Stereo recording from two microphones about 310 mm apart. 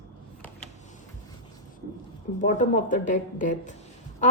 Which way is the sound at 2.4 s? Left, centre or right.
Left.